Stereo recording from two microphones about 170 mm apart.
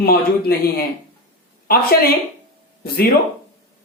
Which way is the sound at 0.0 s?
65° left (ahead or behind).